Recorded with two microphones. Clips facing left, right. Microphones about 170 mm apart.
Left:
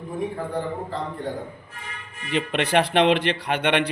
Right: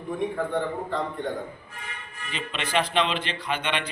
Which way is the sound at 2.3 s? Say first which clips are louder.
Left 6 dB; 60° left (ahead or behind).